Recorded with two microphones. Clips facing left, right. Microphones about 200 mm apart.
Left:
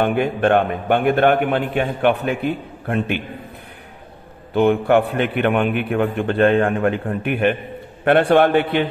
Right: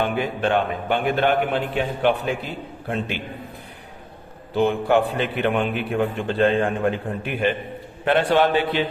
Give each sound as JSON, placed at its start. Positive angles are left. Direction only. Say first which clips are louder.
{"t": 0.0, "sound": "a man's voice", "louder": "left 5 dB", "side_deg": 55}
{"t": 4.6, "sound": "a man's voice", "louder": "left 4 dB", "side_deg": 60}